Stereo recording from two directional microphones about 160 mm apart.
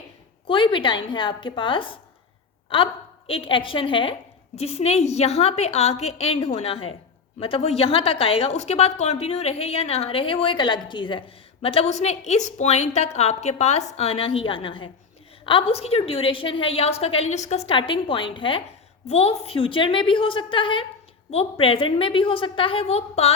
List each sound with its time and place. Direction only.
0.4 s a woman's voice: 30° left (ahead or behind)